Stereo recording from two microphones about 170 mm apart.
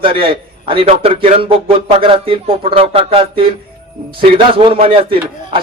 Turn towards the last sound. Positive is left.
turn(degrees=-30)  # may be behind; listen again after turning